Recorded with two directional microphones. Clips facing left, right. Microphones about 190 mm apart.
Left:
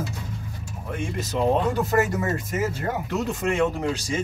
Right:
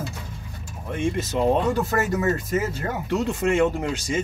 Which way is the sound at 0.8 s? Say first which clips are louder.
Right 5 dB; centre (ahead or behind).